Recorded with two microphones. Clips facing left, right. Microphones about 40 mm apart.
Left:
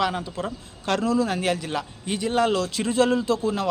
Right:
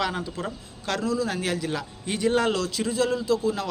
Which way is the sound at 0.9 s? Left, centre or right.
Left.